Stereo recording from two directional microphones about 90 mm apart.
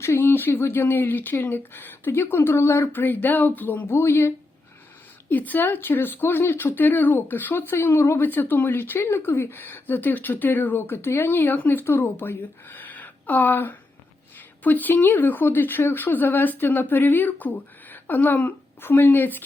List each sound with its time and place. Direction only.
0.0 s speech: 25° left (ahead or behind)
5.3 s speech: 20° left (ahead or behind)